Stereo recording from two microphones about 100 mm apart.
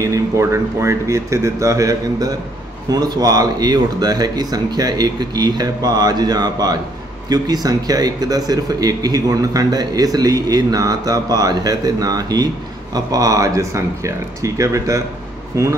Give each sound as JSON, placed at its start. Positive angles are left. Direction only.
{"t": 0.0, "sound": "speech", "side_deg": -30}